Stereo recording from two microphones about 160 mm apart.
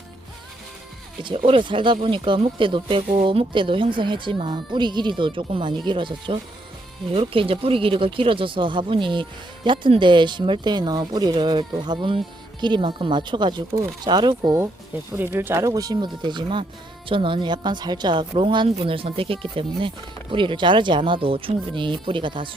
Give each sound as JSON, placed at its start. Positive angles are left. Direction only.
{"t": 1.5, "sound": "a woman's voice", "side_deg": -30}